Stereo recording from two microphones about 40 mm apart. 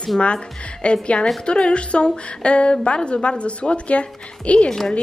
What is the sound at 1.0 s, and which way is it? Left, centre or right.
A woman's voice, left.